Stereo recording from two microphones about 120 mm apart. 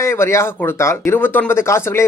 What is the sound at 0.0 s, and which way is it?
Speech, 20° left (ahead or behind).